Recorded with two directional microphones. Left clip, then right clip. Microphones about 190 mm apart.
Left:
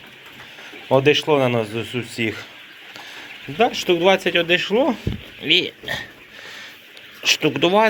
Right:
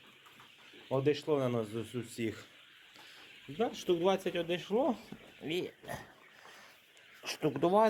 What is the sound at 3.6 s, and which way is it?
Speech, 15° right (ahead or behind).